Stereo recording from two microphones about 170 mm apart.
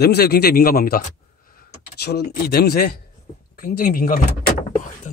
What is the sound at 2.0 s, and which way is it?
Speech, 70° left (ahead or behind).